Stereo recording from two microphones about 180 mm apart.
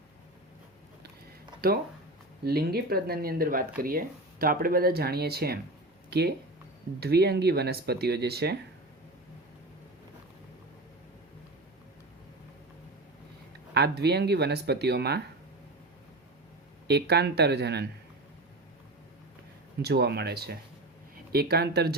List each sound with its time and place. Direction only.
2.4 s speech: 60° right (ahead or behind)
13.7 s speech: 65° right (ahead or behind)
16.9 s speech: 65° right (ahead or behind)
19.8 s speech: 65° right (ahead or behind)